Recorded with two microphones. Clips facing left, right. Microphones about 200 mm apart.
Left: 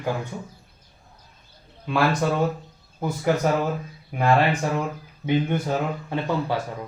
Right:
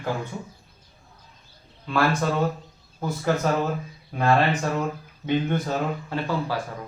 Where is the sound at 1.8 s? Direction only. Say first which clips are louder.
Left 1 dB; 15° left (ahead or behind).